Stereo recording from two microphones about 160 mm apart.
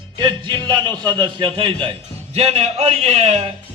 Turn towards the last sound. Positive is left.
turn(degrees=-40)  # may be behind; listen again after turning